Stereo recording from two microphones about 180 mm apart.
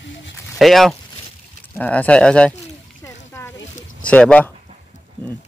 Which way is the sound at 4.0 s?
5° left (ahead or behind).